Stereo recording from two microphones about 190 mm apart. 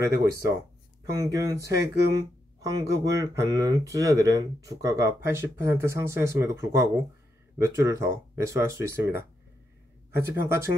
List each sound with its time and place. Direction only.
0.0 s speech: 15° right (ahead or behind)